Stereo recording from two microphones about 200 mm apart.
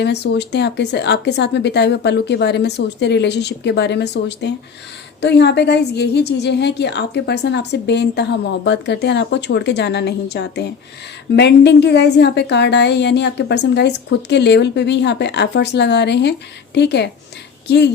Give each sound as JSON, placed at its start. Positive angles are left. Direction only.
{"t": 0.0, "sound": "a woman's voice", "side_deg": 60}